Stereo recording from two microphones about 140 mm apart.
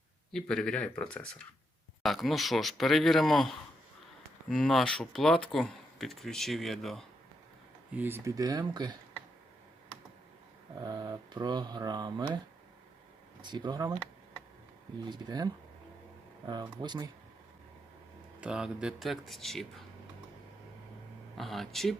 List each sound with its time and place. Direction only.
0.3 s speech: 5° left (ahead or behind)
7.9 s mantra: 15° right (ahead or behind)
10.8 s mantra: 30° right (ahead or behind)
13.4 s speech: 30° right (ahead or behind)
15.0 s speech: 30° right (ahead or behind)
16.5 s mantra: 30° right (ahead or behind)
18.3 s speech: 5° right (ahead or behind)
21.3 s speech: centre (ahead or behind)